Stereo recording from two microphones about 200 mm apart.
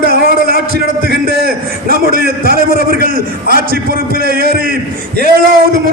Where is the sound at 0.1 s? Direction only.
50° right (ahead or behind).